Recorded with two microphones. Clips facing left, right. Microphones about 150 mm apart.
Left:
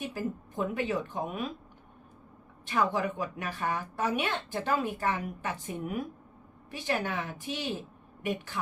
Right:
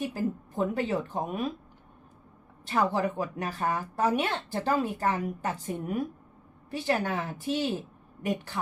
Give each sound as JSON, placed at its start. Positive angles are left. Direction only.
{"t": 0.1, "sound": "speech", "side_deg": -40}
{"t": 2.6, "sound": "speech", "side_deg": -40}